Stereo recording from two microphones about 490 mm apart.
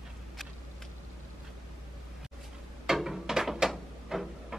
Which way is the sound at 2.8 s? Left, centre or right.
Centre.